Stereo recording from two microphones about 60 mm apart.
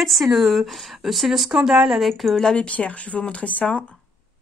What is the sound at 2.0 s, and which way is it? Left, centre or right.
Speech, centre.